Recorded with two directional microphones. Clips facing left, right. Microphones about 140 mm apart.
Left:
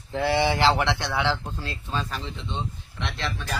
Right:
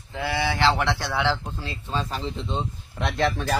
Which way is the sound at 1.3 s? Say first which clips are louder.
Even; 15° right (ahead or behind).